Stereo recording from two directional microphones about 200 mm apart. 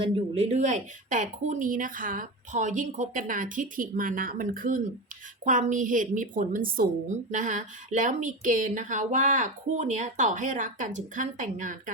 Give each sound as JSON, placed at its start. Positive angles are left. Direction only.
{"t": 0.0, "sound": "speech", "side_deg": -30}